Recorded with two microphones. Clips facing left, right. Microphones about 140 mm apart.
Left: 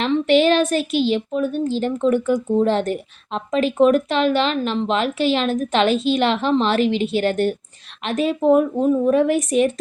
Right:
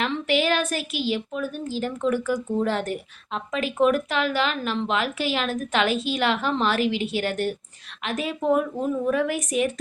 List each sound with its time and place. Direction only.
0.0 s a woman's voice: 25° left (ahead or behind)